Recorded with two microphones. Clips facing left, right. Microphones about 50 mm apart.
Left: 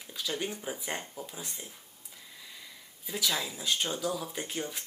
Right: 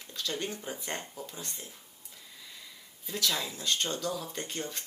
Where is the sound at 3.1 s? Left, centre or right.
Centre.